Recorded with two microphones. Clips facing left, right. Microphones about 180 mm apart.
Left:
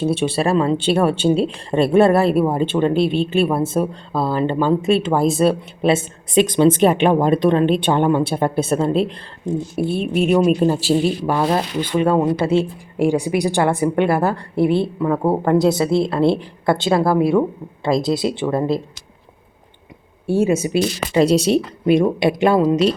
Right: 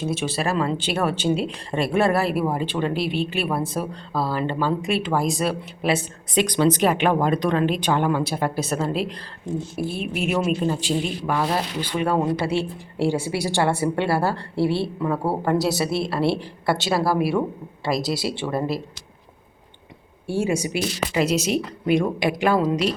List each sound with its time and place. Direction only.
0.0 s a man's voice: 30° left (ahead or behind)
10.4 s a man's voice: 40° left (ahead or behind)
11.3 s speech: 25° left (ahead or behind)
20.2 s speech: 25° left (ahead or behind)